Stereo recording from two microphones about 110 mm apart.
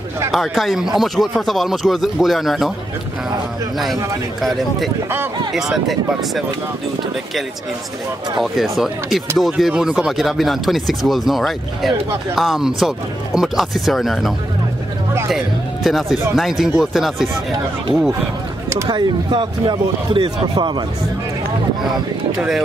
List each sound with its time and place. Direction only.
0.3 s speech: centre (ahead or behind)
3.7 s speech: centre (ahead or behind)
8.4 s speech: centre (ahead or behind)
18.9 s a man's voice: 40° right (ahead or behind)